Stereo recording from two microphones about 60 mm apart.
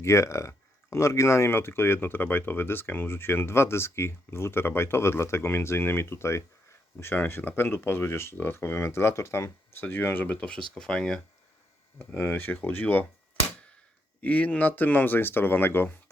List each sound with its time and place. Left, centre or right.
0.0 s speech: left
9.8 s speech: left; by 11.2 s centre
11.9 s speech: left
14.2 s speech: left